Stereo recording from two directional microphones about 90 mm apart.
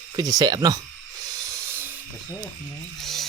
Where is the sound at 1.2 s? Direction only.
45° right (ahead or behind); by 2.0 s 25° right (ahead or behind).